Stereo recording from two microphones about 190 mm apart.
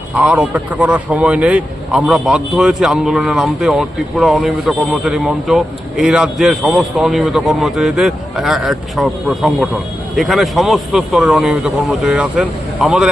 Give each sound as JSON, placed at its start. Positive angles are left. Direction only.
{"t": 0.2, "sound": "a man's voice", "side_deg": -5}